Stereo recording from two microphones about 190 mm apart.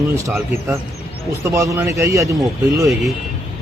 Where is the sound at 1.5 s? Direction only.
15° right (ahead or behind).